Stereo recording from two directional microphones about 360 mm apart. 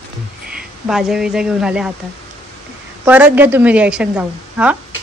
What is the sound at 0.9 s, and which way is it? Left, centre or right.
Speech, centre.